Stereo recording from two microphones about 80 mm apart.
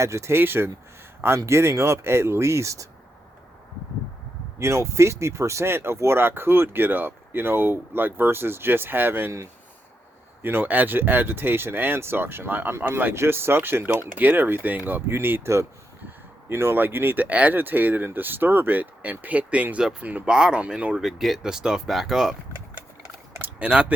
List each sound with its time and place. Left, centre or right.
0.0 s speech: right
4.6 s speech: right; by 22.4 s centre
23.4 s a sound: centre